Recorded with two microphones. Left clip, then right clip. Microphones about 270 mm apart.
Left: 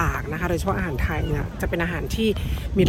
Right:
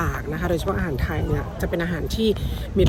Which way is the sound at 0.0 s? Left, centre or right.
Centre.